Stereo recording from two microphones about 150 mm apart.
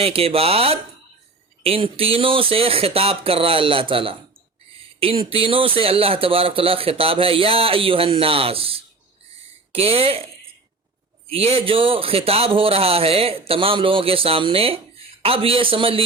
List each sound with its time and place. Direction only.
0.0 s speech: 40° right (ahead or behind)
11.3 s speech: 40° right (ahead or behind)